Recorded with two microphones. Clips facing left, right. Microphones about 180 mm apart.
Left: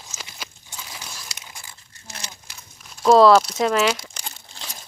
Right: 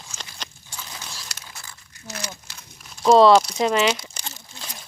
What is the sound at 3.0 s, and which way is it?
Speech, centre (ahead or behind).